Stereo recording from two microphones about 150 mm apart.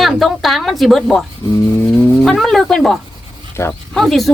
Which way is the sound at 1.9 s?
Centre (ahead or behind).